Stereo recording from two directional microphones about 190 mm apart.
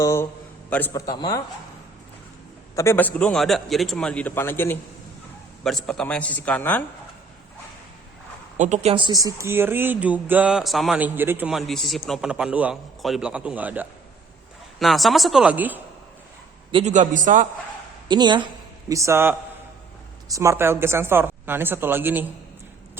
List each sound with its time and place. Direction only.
0.0 s a man's voice: 15° left (ahead or behind)
2.7 s a man's voice: 15° left (ahead or behind)
8.5 s a man's voice: 40° right (ahead or behind)
9.2 s a woman's voice: 15° right (ahead or behind)
16.7 s a man's voice: 40° right (ahead or behind)
18.1 s speech: 25° right (ahead or behind)